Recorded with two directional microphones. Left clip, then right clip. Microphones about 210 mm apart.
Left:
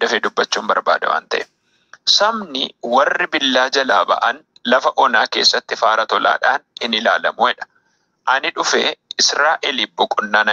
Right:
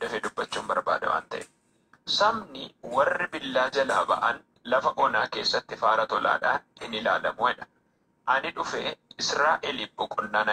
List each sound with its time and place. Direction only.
0.0 s speech: 45° left (ahead or behind)